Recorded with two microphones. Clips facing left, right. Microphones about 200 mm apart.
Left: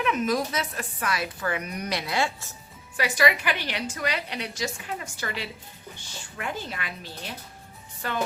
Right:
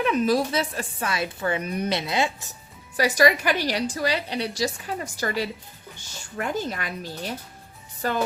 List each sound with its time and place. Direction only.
0.0 s a woman's voice: 30° right (ahead or behind)
3.0 s a woman's voice: 40° right (ahead or behind)